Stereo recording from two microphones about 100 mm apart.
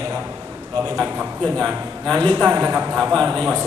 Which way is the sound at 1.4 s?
5° left (ahead or behind).